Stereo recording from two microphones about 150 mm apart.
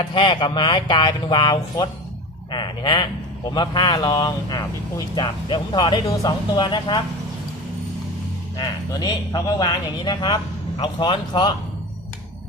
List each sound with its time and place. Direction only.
0.0 s speech: 35° left (ahead or behind)
8.5 s speech: 25° left (ahead or behind)